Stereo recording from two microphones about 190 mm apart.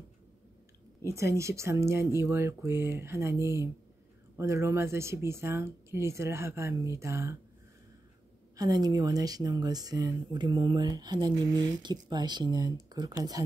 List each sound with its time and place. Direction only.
1.0 s speech: 15° right (ahead or behind)
8.5 s speech: 20° right (ahead or behind)